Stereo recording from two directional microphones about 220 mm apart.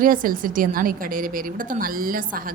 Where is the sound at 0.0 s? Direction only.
40° right (ahead or behind).